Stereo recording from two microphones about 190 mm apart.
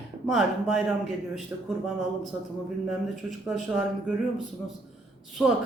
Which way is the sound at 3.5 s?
Centre (ahead or behind).